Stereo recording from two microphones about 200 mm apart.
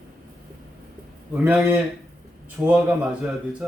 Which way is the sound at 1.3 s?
5° right (ahead or behind).